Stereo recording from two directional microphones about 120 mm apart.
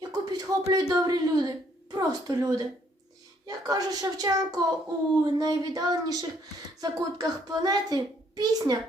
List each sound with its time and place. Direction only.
0.0 s a child's voice: 30° right (ahead or behind)